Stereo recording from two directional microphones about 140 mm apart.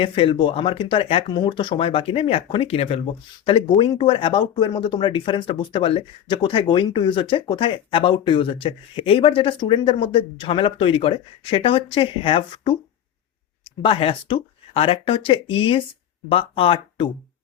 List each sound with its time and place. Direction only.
0.0 s speech: 40° left (ahead or behind)
13.8 s speech: 40° left (ahead or behind)